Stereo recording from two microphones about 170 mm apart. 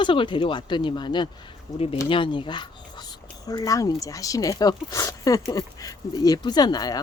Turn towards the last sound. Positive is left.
turn(degrees=25)  # may be behind; listen again after turning